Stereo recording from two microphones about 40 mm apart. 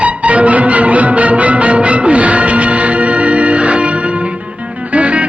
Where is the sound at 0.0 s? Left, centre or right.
Right.